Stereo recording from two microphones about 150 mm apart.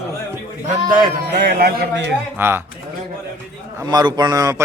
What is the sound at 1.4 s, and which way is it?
Speech, 90° right.